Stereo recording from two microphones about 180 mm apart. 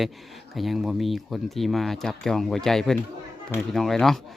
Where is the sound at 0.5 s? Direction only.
Centre (ahead or behind).